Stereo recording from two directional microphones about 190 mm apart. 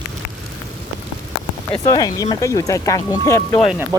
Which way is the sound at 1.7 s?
20° left (ahead or behind).